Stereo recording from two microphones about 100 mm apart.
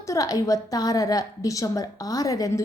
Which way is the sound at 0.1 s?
35° left (ahead or behind).